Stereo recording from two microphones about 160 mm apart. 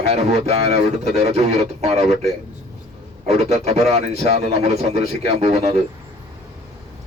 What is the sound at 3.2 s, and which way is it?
Speech, 45° right (ahead or behind).